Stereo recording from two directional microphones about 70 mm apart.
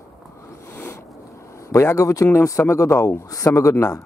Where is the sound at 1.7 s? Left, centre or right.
Left.